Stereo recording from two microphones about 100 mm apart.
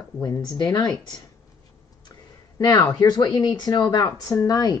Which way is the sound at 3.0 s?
45° left (ahead or behind).